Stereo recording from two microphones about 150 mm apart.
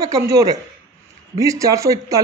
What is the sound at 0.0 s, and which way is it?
Speech, 25° right (ahead or behind).